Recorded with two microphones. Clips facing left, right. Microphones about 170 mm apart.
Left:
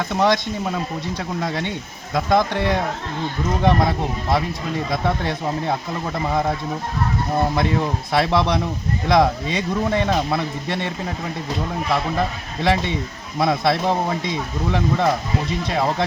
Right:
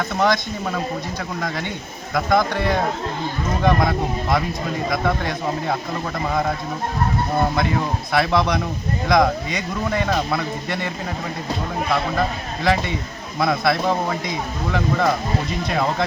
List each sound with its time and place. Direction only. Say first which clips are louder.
0.1 s speech: left 2 dB; 20° left (ahead or behind)
1.4 s speech: left 2 dB; 25° left (ahead or behind)
8.1 s speech: even; 25° left (ahead or behind)
12.6 s speech: left 1 dB; 25° left (ahead or behind)